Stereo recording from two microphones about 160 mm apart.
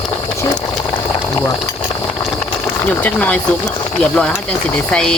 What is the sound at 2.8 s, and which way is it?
Speech, 10° left (ahead or behind).